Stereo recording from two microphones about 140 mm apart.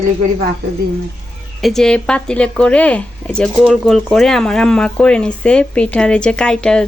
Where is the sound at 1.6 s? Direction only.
Centre (ahead or behind).